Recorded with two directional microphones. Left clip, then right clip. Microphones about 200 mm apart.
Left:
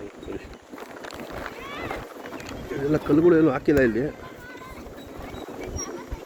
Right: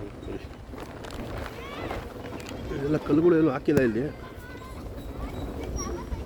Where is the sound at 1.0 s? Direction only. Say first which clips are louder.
Left 3 dB; 20° left (ahead or behind).